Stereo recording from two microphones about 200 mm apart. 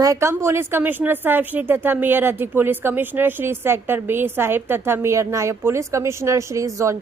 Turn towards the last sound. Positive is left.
turn(degrees=-15)  # may be behind; listen again after turning